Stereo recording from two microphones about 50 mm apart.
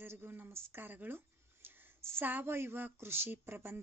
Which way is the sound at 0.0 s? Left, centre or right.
Right.